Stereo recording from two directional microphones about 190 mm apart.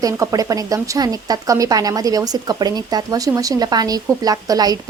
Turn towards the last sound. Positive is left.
turn(degrees=-20)  # may be behind; listen again after turning